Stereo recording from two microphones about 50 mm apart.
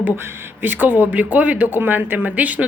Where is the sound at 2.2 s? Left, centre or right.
Right.